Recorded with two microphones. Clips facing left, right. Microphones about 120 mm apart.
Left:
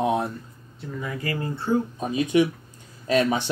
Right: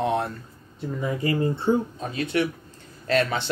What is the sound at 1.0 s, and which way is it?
Speech, 25° right (ahead or behind).